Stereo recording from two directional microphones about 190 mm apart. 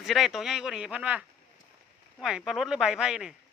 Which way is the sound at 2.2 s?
5° right (ahead or behind).